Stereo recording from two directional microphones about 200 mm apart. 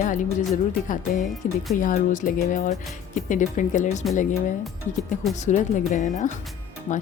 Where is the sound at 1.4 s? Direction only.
45° left (ahead or behind).